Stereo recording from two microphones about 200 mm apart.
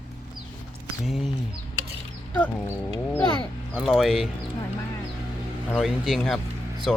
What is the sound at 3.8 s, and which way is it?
Speech, centre (ahead or behind).